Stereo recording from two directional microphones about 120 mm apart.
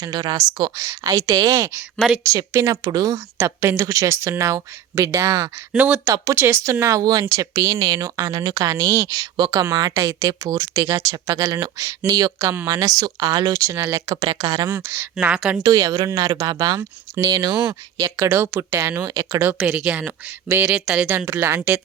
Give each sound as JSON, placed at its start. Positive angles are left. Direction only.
{"t": 0.0, "sound": "speech", "side_deg": -35}
{"t": 0.8, "sound": "speech", "side_deg": -25}
{"t": 3.3, "sound": "speech", "side_deg": -20}
{"t": 5.7, "sound": "speech", "side_deg": -15}
{"t": 6.1, "sound": "speech", "side_deg": -30}
{"t": 6.3, "sound": "speech", "side_deg": -20}
{"t": 14.7, "sound": "speech", "side_deg": -20}
{"t": 15.1, "sound": "speech", "side_deg": -5}
{"t": 15.6, "sound": "speech", "side_deg": -35}
{"t": 19.5, "sound": "speech", "side_deg": -5}
{"t": 21.1, "sound": "speech", "side_deg": -20}